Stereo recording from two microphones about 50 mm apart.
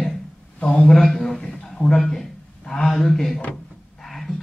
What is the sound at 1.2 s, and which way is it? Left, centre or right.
A man's voice, centre.